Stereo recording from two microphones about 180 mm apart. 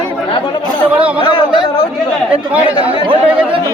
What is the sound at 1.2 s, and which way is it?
Speech, 30° left (ahead or behind).